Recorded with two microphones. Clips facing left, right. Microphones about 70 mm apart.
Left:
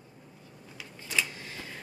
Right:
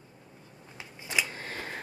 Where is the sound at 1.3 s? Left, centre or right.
Right.